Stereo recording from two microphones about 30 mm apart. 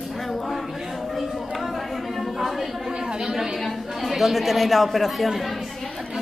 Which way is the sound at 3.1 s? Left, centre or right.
Right.